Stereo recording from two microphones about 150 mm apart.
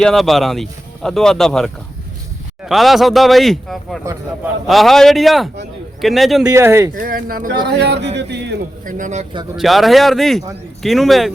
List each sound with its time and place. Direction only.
0.0 s speech: centre (ahead or behind)
6.4 s speech: 20° right (ahead or behind)
6.9 s speech: 70° right (ahead or behind)
8.4 s a man's voice: 65° right (ahead or behind)
9.6 s speech: centre (ahead or behind)